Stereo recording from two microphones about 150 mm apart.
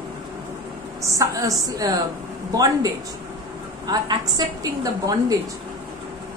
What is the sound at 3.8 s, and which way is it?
Speech, 25° right (ahead or behind).